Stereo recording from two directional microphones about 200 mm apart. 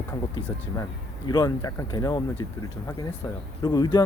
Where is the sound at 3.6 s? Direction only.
20° left (ahead or behind).